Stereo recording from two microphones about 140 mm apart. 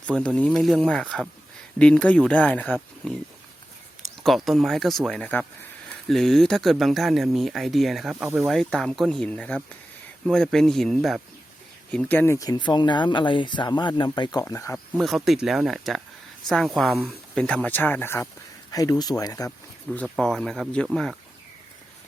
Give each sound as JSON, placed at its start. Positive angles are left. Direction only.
{"t": 0.3, "sound": "speech", "side_deg": 5}
{"t": 4.2, "sound": "speech", "side_deg": 0}
{"t": 14.9, "sound": "speech", "side_deg": 0}
{"t": 19.5, "sound": "speech", "side_deg": 5}